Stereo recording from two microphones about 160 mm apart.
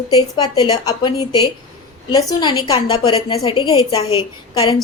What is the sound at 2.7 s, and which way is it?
A woman's voice, 40° left (ahead or behind).